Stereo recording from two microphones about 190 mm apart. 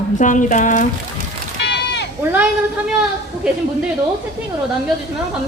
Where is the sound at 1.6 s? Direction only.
60° left (ahead or behind).